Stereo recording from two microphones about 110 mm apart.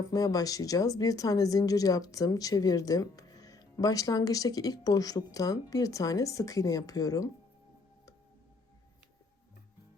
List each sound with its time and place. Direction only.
0.1 s a woman's voice: 35° left (ahead or behind)